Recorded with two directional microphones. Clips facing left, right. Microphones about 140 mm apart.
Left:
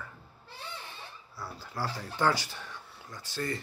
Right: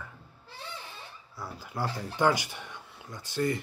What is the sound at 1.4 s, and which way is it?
Speech, 15° right (ahead or behind).